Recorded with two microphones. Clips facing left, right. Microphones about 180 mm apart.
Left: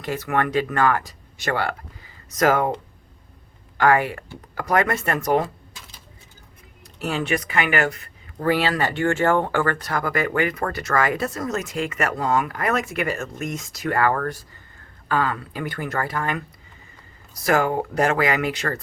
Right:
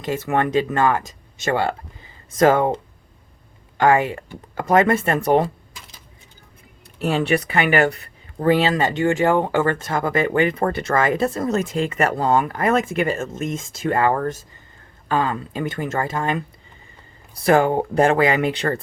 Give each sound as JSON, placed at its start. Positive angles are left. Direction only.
{"t": 0.0, "sound": "speech", "side_deg": -20}
{"t": 7.0, "sound": "speech", "side_deg": -30}
{"t": 17.4, "sound": "speech", "side_deg": -30}